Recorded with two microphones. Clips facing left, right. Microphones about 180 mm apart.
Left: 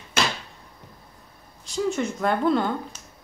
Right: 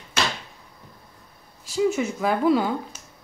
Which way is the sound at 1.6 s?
5° right (ahead or behind).